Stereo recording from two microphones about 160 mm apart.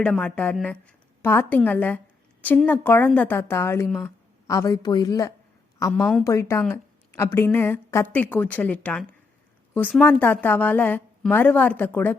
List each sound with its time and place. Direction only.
0.0 s a woman's voice: 5° left (ahead or behind)